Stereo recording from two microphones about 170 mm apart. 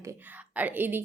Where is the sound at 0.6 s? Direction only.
10° right (ahead or behind).